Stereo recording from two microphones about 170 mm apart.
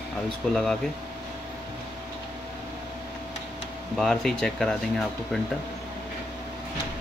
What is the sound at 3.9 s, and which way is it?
Speech, centre (ahead or behind).